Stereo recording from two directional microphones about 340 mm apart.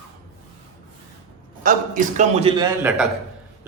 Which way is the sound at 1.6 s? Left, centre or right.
Right.